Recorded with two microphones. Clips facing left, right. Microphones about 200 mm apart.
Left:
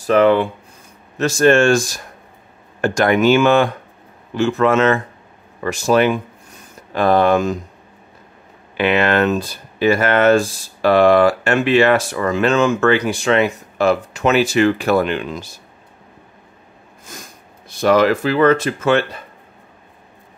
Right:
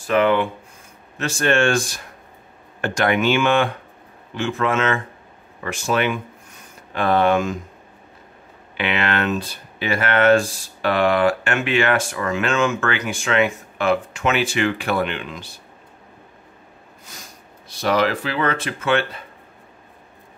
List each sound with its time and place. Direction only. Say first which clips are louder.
0.0 s speech: left 5 dB; 35° left (ahead or behind)
2.8 s speech: left 5 dB; 40° left (ahead or behind)
8.7 s speech: left 7 dB; 45° left (ahead or behind)
17.6 s speech: left 6 dB; 50° left (ahead or behind)